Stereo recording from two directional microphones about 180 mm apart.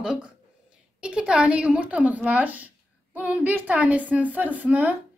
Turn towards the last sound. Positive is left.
turn(degrees=-10)  # may be behind; listen again after turning